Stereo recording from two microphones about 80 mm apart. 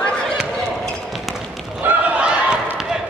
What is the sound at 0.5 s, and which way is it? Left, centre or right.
Run, centre.